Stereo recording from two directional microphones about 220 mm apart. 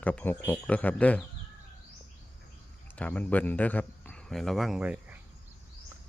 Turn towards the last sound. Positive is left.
turn(degrees=-5)  # may be behind; listen again after turning